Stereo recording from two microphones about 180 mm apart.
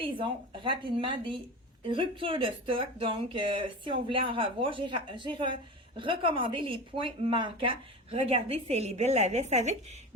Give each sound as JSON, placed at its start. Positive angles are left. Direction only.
{"t": 0.0, "sound": "speech", "side_deg": -30}